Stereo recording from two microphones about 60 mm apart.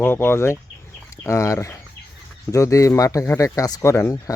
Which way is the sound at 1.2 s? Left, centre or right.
Left.